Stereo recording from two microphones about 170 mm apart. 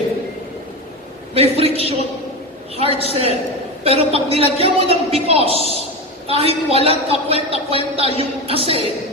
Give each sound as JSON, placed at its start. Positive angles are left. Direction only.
{"t": 1.3, "sound": "a man's voice", "side_deg": -35}
{"t": 3.0, "sound": "a man's voice", "side_deg": -35}